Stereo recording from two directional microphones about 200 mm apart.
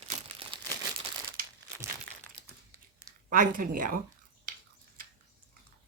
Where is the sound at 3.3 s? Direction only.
45° right (ahead or behind).